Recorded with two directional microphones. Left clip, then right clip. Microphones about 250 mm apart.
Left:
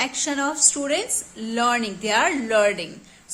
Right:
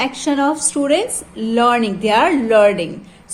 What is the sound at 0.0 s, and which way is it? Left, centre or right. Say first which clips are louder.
A woman's voice: right 7 dB; centre.